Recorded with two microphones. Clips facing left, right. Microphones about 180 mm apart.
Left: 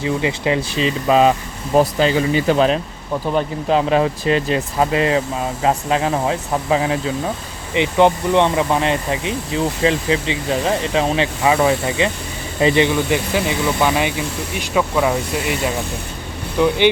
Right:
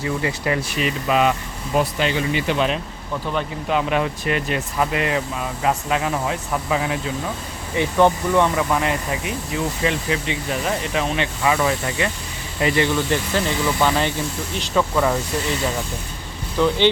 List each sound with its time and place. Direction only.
0.0 s speech: 20° left (ahead or behind)
7.7 s speech: 20° left (ahead or behind)
16.6 s speech: 15° left (ahead or behind)